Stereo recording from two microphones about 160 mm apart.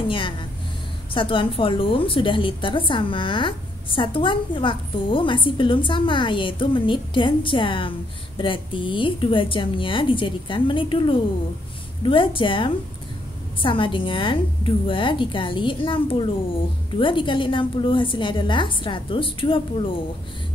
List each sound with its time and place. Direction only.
0.1 s a woman's voice: 30° left (ahead or behind)